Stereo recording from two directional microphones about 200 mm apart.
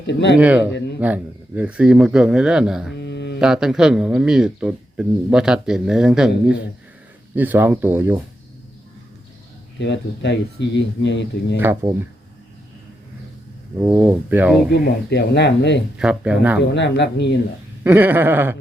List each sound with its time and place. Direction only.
0.1 s speech: 60° left (ahead or behind)
0.3 s speech: 5° right (ahead or behind)
3.0 s mantra: 60° left (ahead or behind)
3.4 s speech: 5° right (ahead or behind)
9.8 s speech: 60° left (ahead or behind)
13.8 s speech: 10° right (ahead or behind)
14.7 s speech: 55° left (ahead or behind)
16.0 s speech: 5° right (ahead or behind)
16.7 s speech: 60° left (ahead or behind)
17.8 s speech: 10° right (ahead or behind)